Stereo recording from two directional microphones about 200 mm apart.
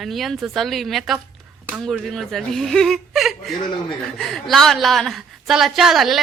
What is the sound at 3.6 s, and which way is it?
Speech, 25° left (ahead or behind).